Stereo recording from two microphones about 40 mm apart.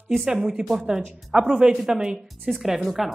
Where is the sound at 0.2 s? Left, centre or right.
Centre.